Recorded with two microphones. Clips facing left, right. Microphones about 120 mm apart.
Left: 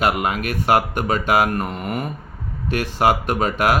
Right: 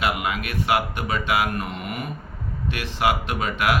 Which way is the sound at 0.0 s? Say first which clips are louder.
Left 5 dB; 40° left (ahead or behind).